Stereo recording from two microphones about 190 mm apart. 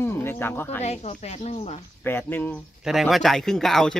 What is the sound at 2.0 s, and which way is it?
Speech, 10° left (ahead or behind).